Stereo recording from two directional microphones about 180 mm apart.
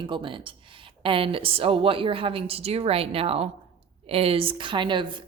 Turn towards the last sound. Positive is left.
turn(degrees=-25)  # may be behind; listen again after turning